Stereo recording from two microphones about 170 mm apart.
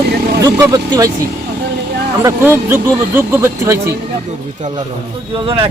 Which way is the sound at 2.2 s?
15° right (ahead or behind).